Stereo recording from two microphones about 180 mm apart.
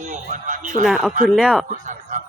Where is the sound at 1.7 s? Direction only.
45° right (ahead or behind).